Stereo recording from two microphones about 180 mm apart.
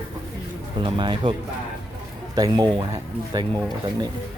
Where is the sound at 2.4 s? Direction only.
25° right (ahead or behind).